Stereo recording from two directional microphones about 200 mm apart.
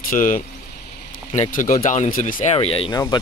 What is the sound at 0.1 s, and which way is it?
Speech, 40° left (ahead or behind).